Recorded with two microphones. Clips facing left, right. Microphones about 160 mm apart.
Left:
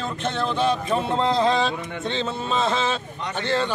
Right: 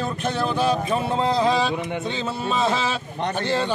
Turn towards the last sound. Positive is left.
turn(degrees=-15)  # may be behind; listen again after turning